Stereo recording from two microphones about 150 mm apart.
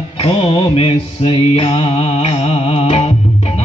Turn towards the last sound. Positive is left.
turn(degrees=45)  # may be behind; listen again after turning